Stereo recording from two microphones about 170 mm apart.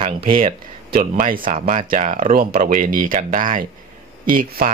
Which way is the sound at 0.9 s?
55° right (ahead or behind).